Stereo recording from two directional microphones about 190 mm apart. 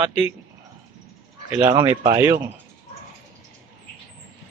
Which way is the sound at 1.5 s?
20° right (ahead or behind).